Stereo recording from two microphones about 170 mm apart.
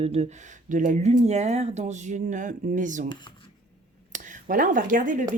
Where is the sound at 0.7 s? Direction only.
50° right (ahead or behind).